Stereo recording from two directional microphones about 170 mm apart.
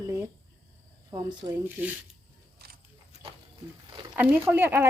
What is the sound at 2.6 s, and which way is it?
Wild animals, 70° right (ahead or behind).